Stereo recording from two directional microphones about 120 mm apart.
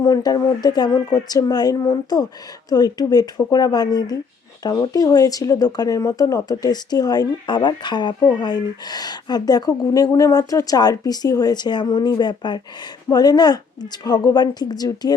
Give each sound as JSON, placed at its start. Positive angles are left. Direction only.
{"t": 0.0, "sound": "speech", "side_deg": 30}